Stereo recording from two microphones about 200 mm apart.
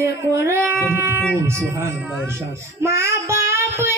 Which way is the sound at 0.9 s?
10° right (ahead or behind).